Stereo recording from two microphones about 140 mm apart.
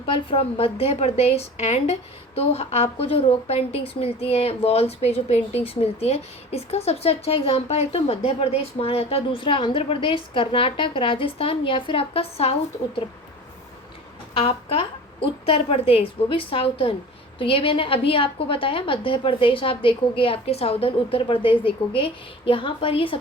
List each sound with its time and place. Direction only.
0.0 s a woman's voice: 40° left (ahead or behind)
14.3 s a woman's voice: 45° left (ahead or behind)